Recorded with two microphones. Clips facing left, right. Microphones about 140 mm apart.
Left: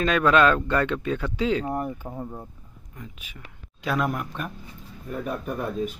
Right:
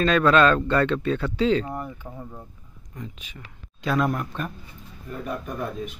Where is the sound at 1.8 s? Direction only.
25° left (ahead or behind).